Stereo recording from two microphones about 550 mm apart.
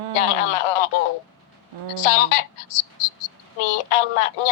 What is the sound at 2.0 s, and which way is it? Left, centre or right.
Speech, left.